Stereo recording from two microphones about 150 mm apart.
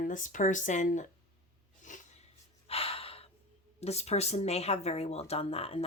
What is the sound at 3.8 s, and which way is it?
Speech, 45° left (ahead or behind).